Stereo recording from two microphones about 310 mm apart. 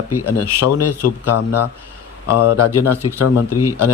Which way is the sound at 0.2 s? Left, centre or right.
Left.